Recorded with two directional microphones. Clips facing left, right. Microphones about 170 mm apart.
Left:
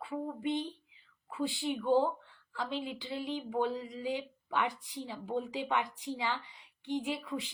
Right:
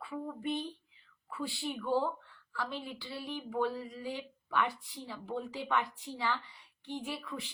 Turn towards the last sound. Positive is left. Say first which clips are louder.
# left 5 dB
turn(degrees=20)  # may be behind; listen again after turning